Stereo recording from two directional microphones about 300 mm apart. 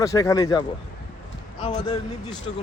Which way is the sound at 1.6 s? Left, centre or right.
Centre.